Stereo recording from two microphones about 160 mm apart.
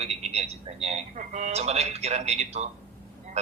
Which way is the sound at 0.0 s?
40° right (ahead or behind).